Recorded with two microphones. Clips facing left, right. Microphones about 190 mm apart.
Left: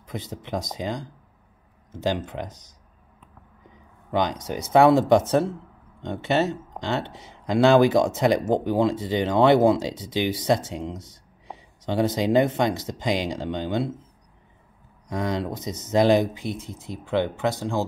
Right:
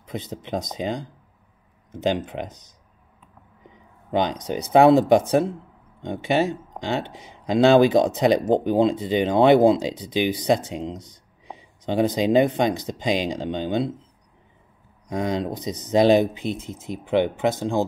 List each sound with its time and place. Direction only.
0.0 s speech: 20° right (ahead or behind)
4.1 s speech: 20° right (ahead or behind)
15.0 s speech: 20° right (ahead or behind)